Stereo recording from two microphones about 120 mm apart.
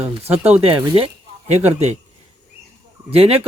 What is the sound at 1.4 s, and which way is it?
Speech, 70° right (ahead or behind).